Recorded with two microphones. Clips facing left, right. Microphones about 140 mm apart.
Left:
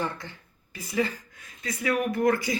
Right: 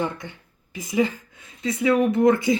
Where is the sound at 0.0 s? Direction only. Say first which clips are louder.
Right 4 dB; 20° right (ahead or behind).